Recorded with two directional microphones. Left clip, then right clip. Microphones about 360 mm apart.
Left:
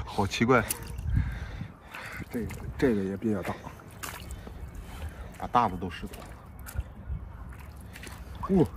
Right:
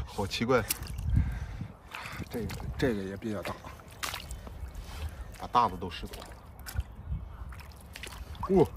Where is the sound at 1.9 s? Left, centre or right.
Centre.